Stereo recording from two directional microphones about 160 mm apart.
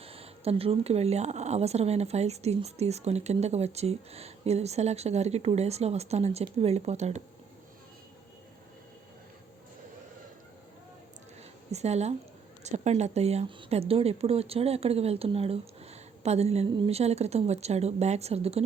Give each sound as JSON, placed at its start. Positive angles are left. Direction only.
{"t": 0.0, "sound": "speech", "side_deg": -40}
{"t": 11.7, "sound": "a woman's voice", "side_deg": -45}